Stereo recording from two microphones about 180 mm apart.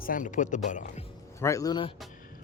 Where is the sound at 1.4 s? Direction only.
20° left (ahead or behind).